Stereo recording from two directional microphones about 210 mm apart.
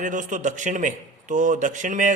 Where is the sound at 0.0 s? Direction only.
40° right (ahead or behind).